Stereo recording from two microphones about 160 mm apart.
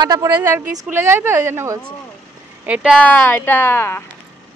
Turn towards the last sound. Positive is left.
turn(degrees=15)  # may be behind; listen again after turning